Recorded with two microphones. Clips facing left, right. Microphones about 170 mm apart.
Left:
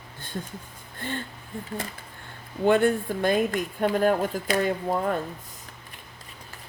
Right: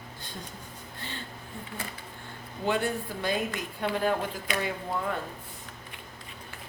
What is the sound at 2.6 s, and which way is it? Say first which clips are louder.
A woman's voice: left 8 dB; 50° left (ahead or behind).